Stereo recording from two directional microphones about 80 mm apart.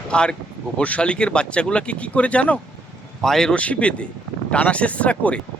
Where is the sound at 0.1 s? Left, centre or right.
Centre.